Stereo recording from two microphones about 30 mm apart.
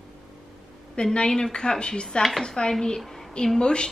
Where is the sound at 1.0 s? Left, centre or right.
Left.